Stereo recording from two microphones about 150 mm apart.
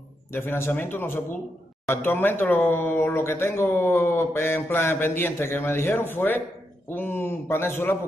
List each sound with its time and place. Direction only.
0.3 s speech: 15° left (ahead or behind)